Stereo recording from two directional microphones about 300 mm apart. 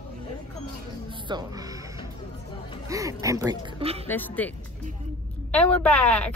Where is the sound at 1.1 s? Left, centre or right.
Centre.